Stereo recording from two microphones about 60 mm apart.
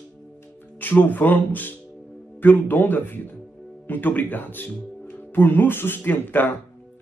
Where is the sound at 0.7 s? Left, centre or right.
Left.